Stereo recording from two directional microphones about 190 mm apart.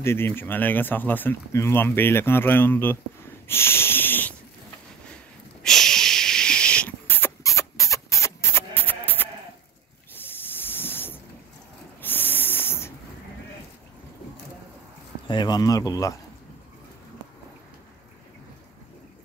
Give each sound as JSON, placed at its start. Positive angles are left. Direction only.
{"t": 0.0, "sound": "speech", "side_deg": 10}
{"t": 3.4, "sound": "a sound", "side_deg": 10}
{"t": 10.1, "sound": "hiss", "side_deg": 10}
{"t": 12.0, "sound": "owl", "side_deg": 10}
{"t": 15.2, "sound": "speech", "side_deg": 25}